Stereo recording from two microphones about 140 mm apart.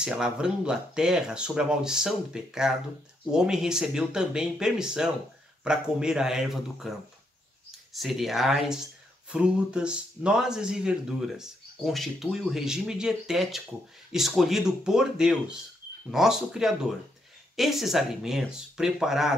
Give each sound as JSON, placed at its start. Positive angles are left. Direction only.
{"t": 0.0, "sound": "speech", "side_deg": -5}